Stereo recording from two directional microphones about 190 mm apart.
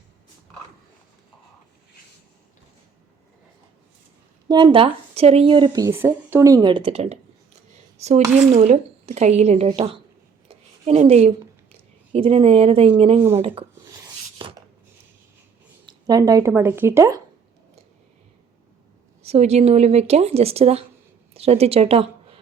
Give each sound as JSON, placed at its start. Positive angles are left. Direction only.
{"t": 4.4, "sound": "speech", "side_deg": -25}
{"t": 10.5, "sound": "a sound", "side_deg": -35}
{"t": 11.7, "sound": "speech", "side_deg": -30}
{"t": 14.3, "sound": "chopping", "side_deg": -25}
{"t": 15.9, "sound": "speech", "side_deg": -20}
{"t": 19.2, "sound": "speech", "side_deg": -35}